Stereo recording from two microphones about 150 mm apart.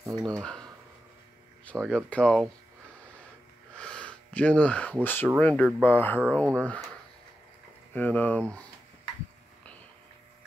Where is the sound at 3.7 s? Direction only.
5° left (ahead or behind).